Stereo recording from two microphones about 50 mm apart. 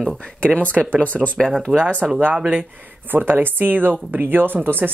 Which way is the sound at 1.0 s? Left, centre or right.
Left.